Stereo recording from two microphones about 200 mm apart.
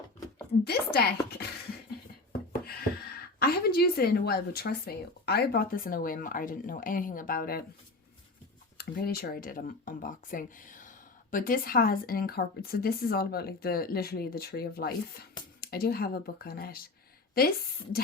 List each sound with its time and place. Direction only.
0.6 s speech: 55° left (ahead or behind)
3.4 s speech: 50° left (ahead or behind)
8.8 s speech: 50° left (ahead or behind)